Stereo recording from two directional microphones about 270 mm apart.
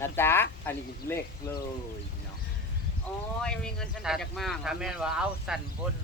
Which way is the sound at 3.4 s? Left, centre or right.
Centre.